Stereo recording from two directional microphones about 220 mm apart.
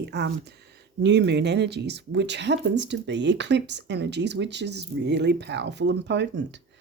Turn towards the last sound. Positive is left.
turn(degrees=-50)  # may be behind; listen again after turning